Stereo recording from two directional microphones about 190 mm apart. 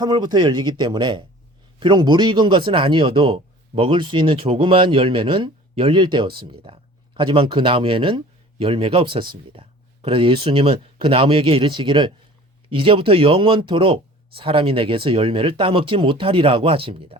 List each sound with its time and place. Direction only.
0.0 s speech: 20° right (ahead or behind)